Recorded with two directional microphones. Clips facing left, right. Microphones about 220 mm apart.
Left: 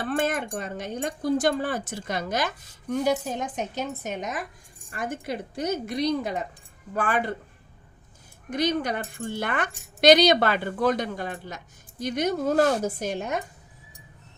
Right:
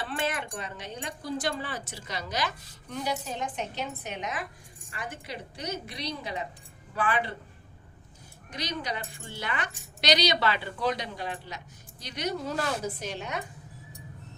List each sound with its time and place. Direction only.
0.0 s speech: 50° left (ahead or behind)
8.4 s speech: 50° left (ahead or behind)